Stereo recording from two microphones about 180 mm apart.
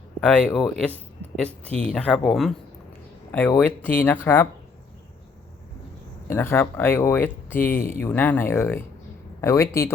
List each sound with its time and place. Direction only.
0.2 s speech: 5° left (ahead or behind)
6.2 s speech: 15° left (ahead or behind)